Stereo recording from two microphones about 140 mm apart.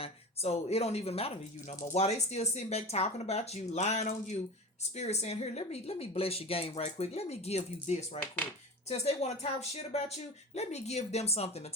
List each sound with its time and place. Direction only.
0.0 s speech: 45° left (ahead or behind)